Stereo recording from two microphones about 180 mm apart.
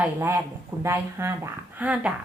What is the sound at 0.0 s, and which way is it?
A woman's voice, 10° right (ahead or behind).